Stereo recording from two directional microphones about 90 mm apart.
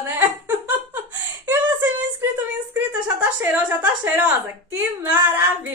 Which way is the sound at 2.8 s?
20° right (ahead or behind).